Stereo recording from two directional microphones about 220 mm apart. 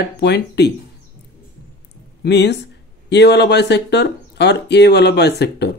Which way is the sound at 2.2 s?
50° left (ahead or behind).